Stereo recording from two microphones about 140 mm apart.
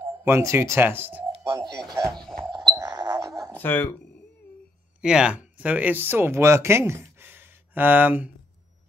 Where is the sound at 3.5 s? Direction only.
15° left (ahead or behind).